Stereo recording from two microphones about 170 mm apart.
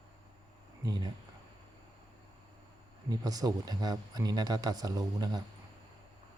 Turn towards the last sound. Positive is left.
turn(degrees=-25)  # may be behind; listen again after turning